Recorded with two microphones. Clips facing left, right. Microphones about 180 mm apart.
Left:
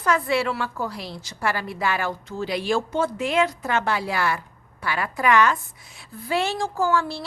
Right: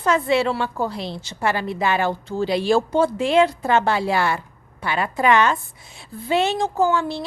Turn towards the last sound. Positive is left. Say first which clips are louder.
# right 3 dB
turn(degrees=-20)  # may be behind; listen again after turning